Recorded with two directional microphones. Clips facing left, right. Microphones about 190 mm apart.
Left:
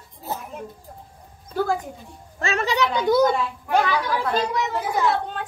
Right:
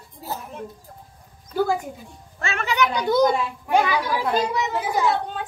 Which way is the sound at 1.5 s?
5° right (ahead or behind).